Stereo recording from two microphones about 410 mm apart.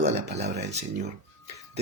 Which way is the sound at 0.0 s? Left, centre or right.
Centre.